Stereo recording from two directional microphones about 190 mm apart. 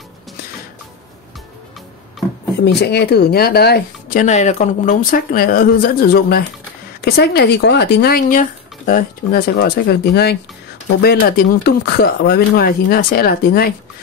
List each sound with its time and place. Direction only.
2.6 s speech: 60° left (ahead or behind)
9.6 s speech: 60° left (ahead or behind)